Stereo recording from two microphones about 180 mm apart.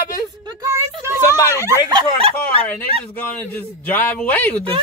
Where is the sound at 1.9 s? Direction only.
30° right (ahead or behind).